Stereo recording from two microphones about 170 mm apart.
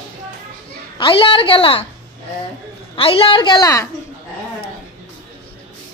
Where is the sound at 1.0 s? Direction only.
30° left (ahead or behind).